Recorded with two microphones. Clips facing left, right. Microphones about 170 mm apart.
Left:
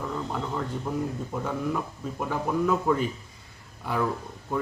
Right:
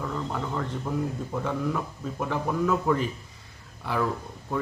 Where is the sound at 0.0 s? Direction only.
10° left (ahead or behind).